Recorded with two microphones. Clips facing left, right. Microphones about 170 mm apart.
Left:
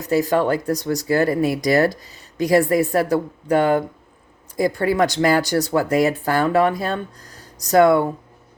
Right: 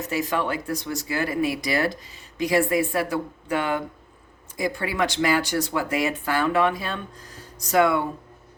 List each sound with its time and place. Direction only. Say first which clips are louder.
0.0 s speech: left 7 dB; 35° left (ahead or behind)